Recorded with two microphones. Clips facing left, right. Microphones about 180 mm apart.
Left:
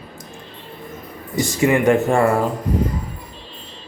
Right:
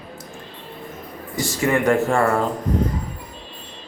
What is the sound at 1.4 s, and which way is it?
Speech, 15° left (ahead or behind).